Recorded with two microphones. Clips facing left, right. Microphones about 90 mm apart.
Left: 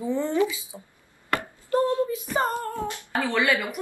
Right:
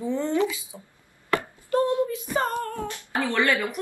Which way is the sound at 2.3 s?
20° left (ahead or behind).